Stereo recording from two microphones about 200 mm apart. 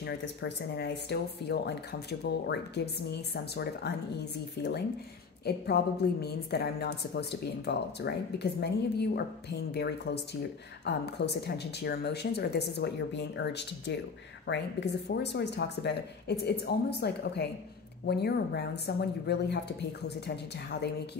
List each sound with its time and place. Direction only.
0.0 s speech: 60° left (ahead or behind)